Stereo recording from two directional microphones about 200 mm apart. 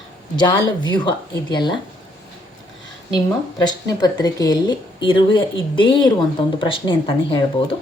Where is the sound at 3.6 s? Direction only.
20° left (ahead or behind).